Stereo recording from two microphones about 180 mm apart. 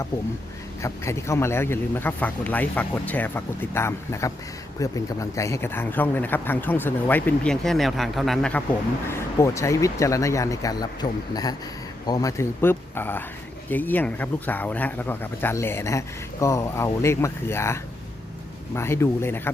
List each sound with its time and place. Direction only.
0.8 s speech: 15° left (ahead or behind)
9.0 s speech: 15° left (ahead or behind)